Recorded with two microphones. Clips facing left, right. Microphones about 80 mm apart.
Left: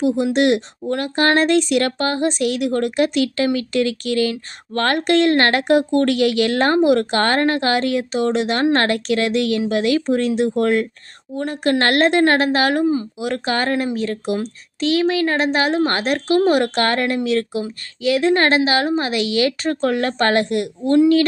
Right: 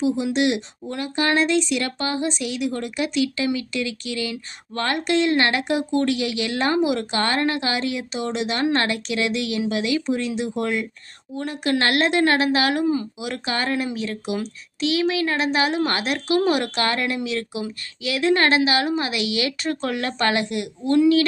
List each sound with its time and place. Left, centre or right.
0.0 s a woman's voice: left